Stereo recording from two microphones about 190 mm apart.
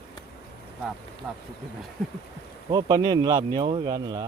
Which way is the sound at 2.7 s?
20° right (ahead or behind).